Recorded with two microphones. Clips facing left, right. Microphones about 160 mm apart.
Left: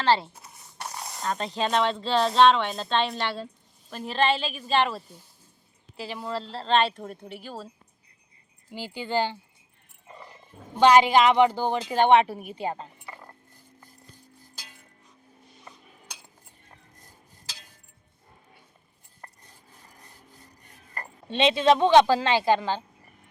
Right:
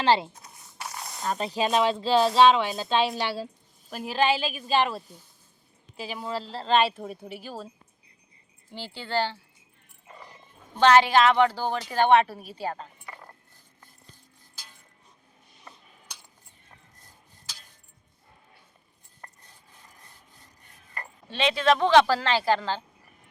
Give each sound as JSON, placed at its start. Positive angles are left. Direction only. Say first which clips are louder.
{"t": 0.0, "sound": "speech", "louder": "right 1 dB", "side_deg": -15}
{"t": 9.0, "sound": "a woman's voice", "louder": "left 1 dB", "side_deg": 15}
{"t": 10.8, "sound": "a woman's voice", "louder": "left 1 dB", "side_deg": 15}
{"t": 13.1, "sound": "a sound", "louder": "left 1 dB", "side_deg": 5}
{"t": 21.2, "sound": "speech", "louder": "left 3 dB", "side_deg": 25}